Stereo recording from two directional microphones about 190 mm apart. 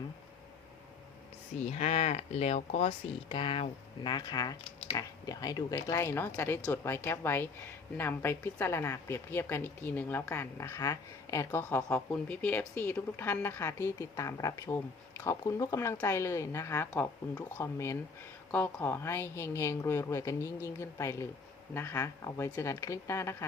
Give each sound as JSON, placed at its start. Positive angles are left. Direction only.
{"t": 1.6, "sound": "a woman's voice", "side_deg": 35}